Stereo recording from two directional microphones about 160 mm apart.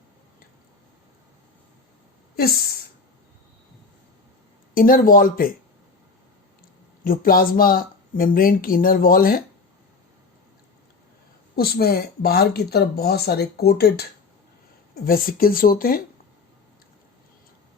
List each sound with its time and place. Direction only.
2.3 s speech: 70° left (ahead or behind)
4.7 s speech: 65° left (ahead or behind)
7.0 s speech: 65° left (ahead or behind)
11.5 s speech: 75° left (ahead or behind)
14.9 s speech: 65° left (ahead or behind)